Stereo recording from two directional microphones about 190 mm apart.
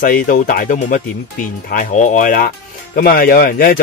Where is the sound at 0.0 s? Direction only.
45° left (ahead or behind).